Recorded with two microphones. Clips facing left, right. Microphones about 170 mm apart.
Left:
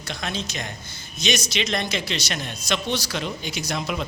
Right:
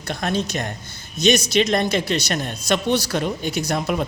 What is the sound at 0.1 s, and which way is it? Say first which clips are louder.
Speech: right 7 dB; 50° right (ahead or behind).